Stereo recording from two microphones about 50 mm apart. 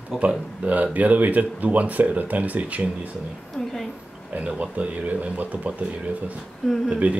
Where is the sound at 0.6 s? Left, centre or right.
Right.